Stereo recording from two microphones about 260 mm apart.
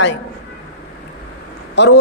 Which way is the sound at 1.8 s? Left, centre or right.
Left.